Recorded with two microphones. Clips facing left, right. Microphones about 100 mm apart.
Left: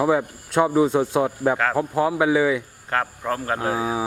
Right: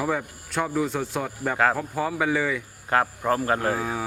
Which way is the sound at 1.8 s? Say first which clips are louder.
Left 6 dB; 10° left (ahead or behind).